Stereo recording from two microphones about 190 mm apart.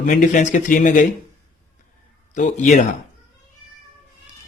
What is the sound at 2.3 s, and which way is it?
Speech, 40° left (ahead or behind).